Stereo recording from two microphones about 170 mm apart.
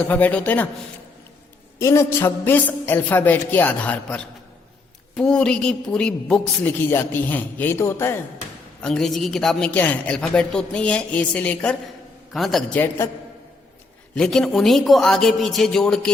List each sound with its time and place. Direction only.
0.0 s a woman's voice: 10° left (ahead or behind)
1.8 s a woman's voice: 15° left (ahead or behind)
8.8 s a woman's voice: 5° left (ahead or behind)
14.2 s a woman's voice: centre (ahead or behind)